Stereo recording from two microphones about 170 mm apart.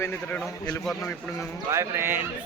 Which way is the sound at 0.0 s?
10° left (ahead or behind).